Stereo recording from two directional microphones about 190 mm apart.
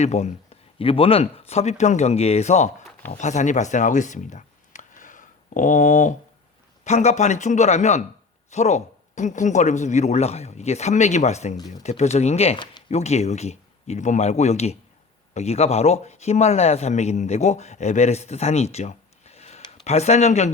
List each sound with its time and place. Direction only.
0.0 s speech: 35° left (ahead or behind)